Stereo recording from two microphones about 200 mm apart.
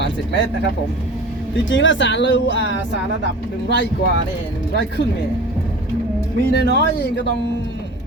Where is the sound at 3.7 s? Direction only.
65° left (ahead or behind).